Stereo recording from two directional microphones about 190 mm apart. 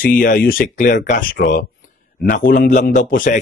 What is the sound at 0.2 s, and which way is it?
Speech, 45° left (ahead or behind).